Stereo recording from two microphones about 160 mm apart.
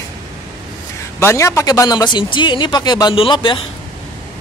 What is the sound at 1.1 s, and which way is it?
A man's voice, 20° left (ahead or behind).